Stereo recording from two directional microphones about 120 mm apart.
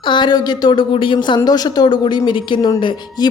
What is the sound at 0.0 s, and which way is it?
A woman's voice, 40° left (ahead or behind).